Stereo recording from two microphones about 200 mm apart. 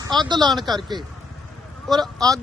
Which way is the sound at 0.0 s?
20° right (ahead or behind).